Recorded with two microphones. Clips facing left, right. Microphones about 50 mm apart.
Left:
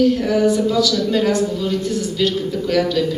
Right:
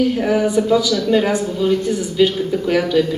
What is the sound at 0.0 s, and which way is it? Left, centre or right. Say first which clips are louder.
A man's voice: left 1 dB; right.